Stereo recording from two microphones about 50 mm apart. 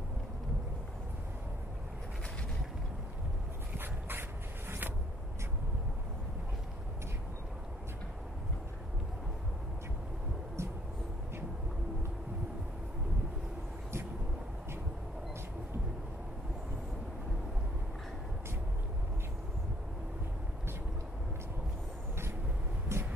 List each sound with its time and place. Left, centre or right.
3.7 s dog: right
10.6 s music: right
22.9 s music: right